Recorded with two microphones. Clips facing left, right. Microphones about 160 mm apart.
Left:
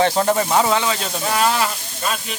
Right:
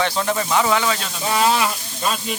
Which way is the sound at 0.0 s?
40° left (ahead or behind).